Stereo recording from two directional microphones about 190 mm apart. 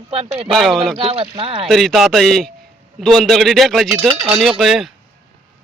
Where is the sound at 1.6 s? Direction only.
Centre (ahead or behind).